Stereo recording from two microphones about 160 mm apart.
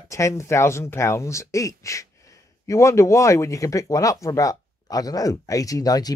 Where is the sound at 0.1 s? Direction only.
20° left (ahead or behind).